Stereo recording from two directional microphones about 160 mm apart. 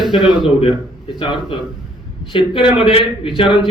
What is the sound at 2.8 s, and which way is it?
Speech, 35° left (ahead or behind).